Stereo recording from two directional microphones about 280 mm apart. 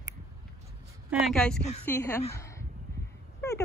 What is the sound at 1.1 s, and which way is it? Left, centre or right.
A woman's voice, centre.